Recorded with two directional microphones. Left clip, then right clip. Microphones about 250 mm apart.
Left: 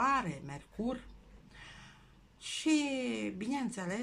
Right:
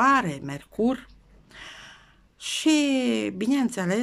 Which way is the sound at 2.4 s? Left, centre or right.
Right.